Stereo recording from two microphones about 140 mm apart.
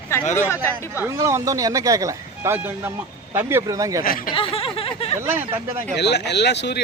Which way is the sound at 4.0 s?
90° left.